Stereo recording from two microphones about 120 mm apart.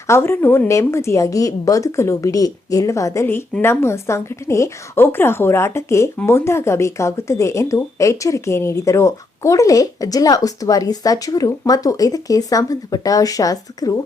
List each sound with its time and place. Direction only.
0.1 s speech: 20° left (ahead or behind)